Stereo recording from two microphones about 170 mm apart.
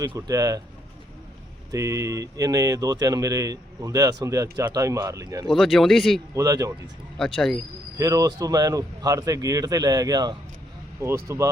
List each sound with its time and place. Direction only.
0.0 s speech: 20° right (ahead or behind)
1.7 s speech: 20° right (ahead or behind)
5.5 s speech: centre (ahead or behind)
6.3 s speech: 20° right (ahead or behind)
7.3 s speech: 5° left (ahead or behind)
7.9 s speech: 20° right (ahead or behind)